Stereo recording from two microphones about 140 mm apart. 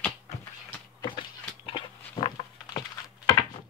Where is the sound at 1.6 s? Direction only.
40° left (ahead or behind).